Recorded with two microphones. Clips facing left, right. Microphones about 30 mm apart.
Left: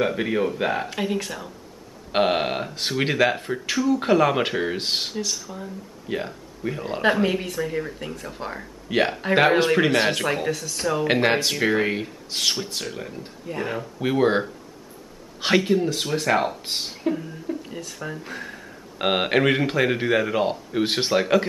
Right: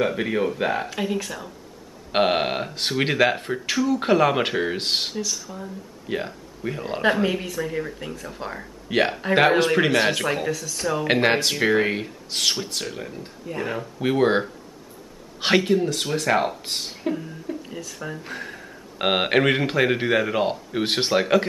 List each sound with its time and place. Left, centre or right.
0.0 s speech: centre
2.1 s speech: centre